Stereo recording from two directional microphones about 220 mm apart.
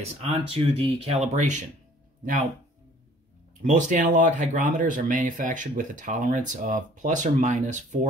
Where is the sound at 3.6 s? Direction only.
35° right (ahead or behind).